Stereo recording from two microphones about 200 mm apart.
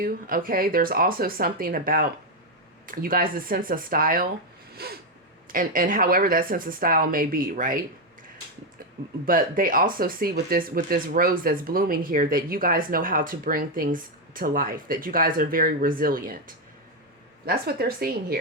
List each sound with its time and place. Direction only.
0.0 s speech: 45° right (ahead or behind)
9.2 s speech: 45° right (ahead or behind)
17.4 s speech: 50° right (ahead or behind)